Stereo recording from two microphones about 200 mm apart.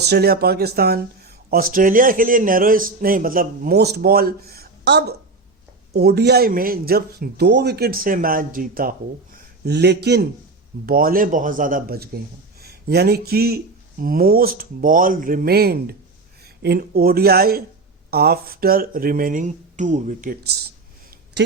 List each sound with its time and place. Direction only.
0.0 s speech: 55° right (ahead or behind)
9.6 s speech: 55° right (ahead or behind)